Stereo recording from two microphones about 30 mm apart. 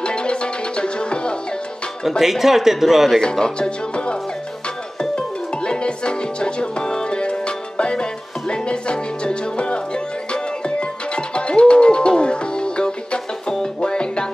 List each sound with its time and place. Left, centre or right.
0.0 s music: left
2.0 s speech: centre
3.2 s speech: left
5.1 s music: left